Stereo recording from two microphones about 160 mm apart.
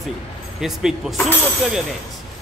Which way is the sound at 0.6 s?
5° right (ahead or behind).